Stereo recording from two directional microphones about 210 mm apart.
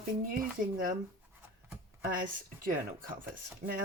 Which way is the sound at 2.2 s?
40° right (ahead or behind).